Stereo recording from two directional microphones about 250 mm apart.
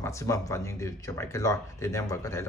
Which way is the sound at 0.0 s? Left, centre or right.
Centre.